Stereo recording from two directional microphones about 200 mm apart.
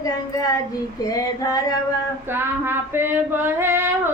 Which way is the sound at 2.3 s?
10° right (ahead or behind).